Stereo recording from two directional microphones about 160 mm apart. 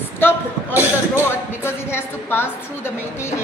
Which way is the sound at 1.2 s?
15° left (ahead or behind).